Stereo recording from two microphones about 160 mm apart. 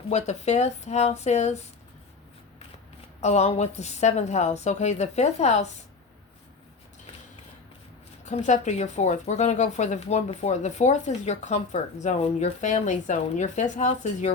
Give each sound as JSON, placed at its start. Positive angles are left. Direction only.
{"t": 0.1, "sound": "speech", "side_deg": 45}
{"t": 3.2, "sound": "speech", "side_deg": 45}
{"t": 8.2, "sound": "speech", "side_deg": 50}